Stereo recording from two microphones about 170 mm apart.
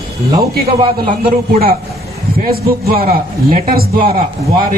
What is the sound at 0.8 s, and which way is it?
Speech, 35° right (ahead or behind).